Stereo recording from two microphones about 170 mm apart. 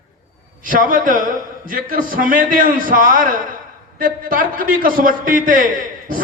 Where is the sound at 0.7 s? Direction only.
55° right (ahead or behind).